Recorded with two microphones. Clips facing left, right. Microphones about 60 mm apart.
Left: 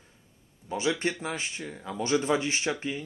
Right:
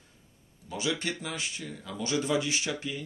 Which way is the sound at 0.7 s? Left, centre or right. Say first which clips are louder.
Left 4 dB; left.